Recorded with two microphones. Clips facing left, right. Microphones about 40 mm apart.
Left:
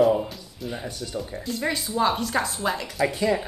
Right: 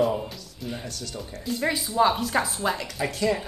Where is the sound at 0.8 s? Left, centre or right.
Left.